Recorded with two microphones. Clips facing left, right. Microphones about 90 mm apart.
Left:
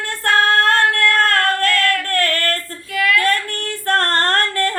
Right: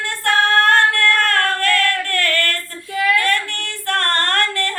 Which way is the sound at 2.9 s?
30° right (ahead or behind).